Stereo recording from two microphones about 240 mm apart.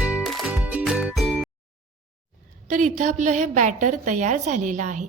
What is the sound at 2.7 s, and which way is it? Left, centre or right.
A woman's voice, right.